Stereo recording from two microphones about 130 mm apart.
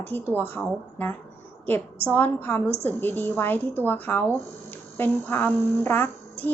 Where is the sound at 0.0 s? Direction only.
15° left (ahead or behind).